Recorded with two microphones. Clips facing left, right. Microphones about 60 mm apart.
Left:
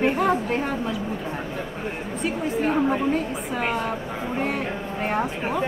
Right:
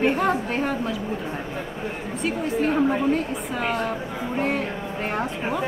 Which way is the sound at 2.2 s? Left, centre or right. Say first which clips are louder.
Right 1 dB; centre.